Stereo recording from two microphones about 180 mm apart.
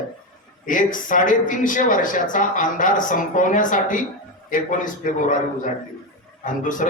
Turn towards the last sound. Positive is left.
turn(degrees=45)  # may be behind; listen again after turning